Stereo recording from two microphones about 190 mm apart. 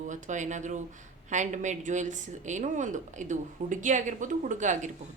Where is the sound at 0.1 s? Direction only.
40° right (ahead or behind).